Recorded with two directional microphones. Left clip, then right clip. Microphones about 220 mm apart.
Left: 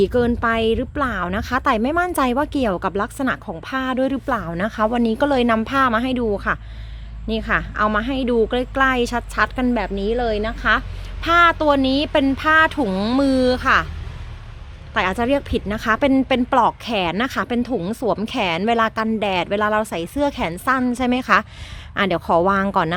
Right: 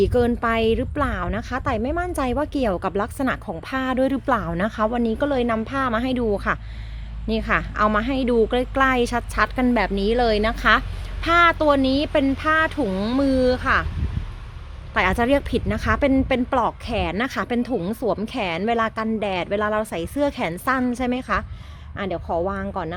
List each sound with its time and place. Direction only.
0.0 s a woman's voice: 10° left (ahead or behind)
14.9 s a woman's voice: 5° left (ahead or behind); by 23.0 s 30° left (ahead or behind)